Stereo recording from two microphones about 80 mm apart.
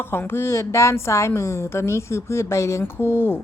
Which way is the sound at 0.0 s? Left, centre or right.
Left.